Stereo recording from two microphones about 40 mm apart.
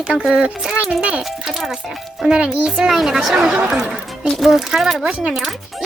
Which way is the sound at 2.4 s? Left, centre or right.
Right.